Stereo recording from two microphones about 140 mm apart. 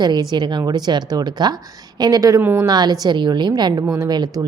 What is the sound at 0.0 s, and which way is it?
A woman's voice, 30° right (ahead or behind).